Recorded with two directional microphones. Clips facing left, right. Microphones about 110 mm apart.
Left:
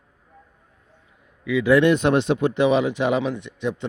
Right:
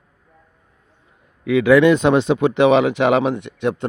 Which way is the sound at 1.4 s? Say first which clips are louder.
Right 5 dB; 70° right (ahead or behind).